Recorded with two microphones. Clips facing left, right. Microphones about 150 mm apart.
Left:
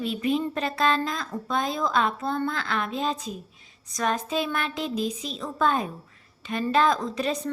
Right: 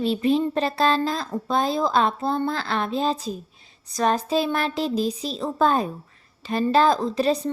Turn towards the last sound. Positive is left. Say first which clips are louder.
# right 6 dB
turn(degrees=-35)  # may be behind; listen again after turning